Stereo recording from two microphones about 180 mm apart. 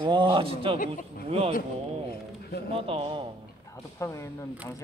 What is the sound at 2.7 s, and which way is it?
Speech, 30° right (ahead or behind).